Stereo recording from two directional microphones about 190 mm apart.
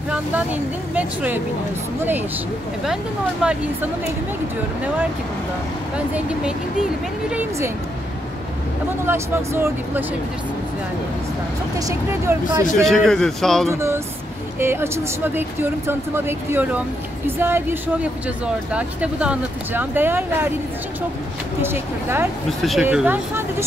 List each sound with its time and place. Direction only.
0.1 s speech: 10° right (ahead or behind)
5.9 s speech: 5° right (ahead or behind)
9.0 s speech: 10° right (ahead or behind)
11.9 s speech: 15° right (ahead or behind)
12.8 s a man's voice: centre (ahead or behind)
13.7 s speech: 15° right (ahead or behind)
21.5 s speech: 10° right (ahead or behind)
22.6 s a man's voice: centre (ahead or behind)
22.8 s speech: 10° right (ahead or behind)